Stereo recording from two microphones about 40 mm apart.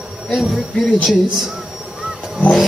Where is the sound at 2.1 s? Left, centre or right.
Centre.